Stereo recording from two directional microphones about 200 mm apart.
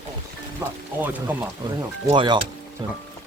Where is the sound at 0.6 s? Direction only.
15° right (ahead or behind).